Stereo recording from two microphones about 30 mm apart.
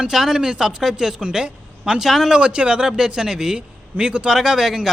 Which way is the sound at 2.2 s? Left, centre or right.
Right.